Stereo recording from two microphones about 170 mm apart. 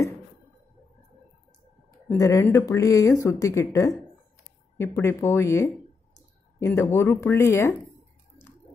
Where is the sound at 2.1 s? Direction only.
20° left (ahead or behind).